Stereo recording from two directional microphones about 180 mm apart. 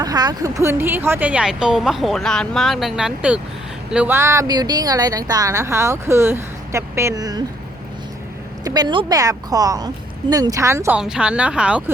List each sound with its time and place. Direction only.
0.0 s speech: 20° right (ahead or behind)
8.6 s a woman's voice: 20° right (ahead or behind); by 11.8 s 5° right (ahead or behind)